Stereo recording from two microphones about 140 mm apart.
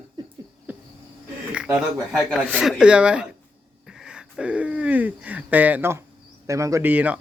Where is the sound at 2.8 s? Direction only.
5° right (ahead or behind).